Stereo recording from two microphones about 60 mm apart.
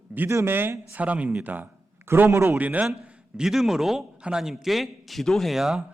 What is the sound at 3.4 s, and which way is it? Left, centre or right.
A man's voice, centre.